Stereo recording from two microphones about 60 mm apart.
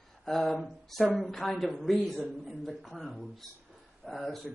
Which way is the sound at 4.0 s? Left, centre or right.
Centre.